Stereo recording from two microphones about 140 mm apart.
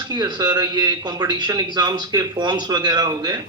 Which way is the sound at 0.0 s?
30° right (ahead or behind).